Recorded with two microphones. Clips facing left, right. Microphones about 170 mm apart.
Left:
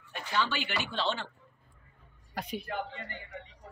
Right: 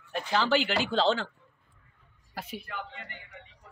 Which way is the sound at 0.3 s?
90° right.